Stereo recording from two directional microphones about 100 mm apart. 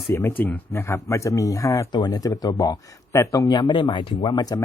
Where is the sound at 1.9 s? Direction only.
45° left (ahead or behind).